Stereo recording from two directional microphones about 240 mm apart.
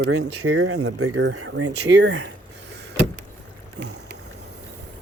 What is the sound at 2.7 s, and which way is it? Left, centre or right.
Vehicle, right.